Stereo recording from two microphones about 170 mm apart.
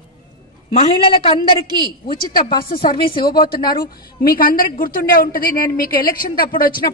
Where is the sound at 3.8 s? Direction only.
60° left (ahead or behind).